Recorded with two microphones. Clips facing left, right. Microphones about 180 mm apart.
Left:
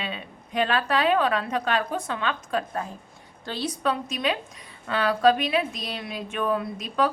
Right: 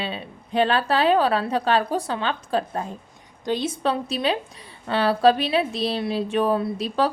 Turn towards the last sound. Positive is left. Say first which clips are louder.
# right 3 dB
turn(degrees=-30)  # may be behind; listen again after turning